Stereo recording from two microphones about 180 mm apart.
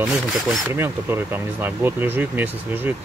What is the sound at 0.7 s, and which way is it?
Speech, 15° right (ahead or behind).